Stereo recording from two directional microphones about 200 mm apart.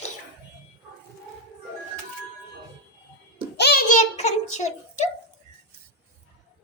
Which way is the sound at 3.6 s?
55° left (ahead or behind).